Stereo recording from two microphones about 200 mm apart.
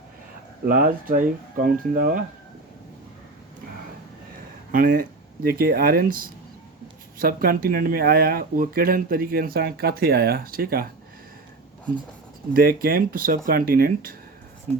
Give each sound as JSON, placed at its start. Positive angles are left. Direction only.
{"t": 0.7, "sound": "speech", "side_deg": -45}
{"t": 4.7, "sound": "speech", "side_deg": -45}
{"t": 12.5, "sound": "speech", "side_deg": -45}